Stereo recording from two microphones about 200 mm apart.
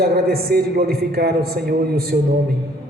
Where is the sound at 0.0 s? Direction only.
50° right (ahead or behind).